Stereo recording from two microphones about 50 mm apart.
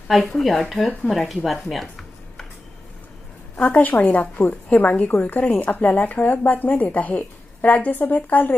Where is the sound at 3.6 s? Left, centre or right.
Left.